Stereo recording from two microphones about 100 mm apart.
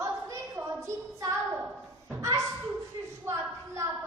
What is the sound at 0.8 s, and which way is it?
Child singing, 30° right (ahead or behind).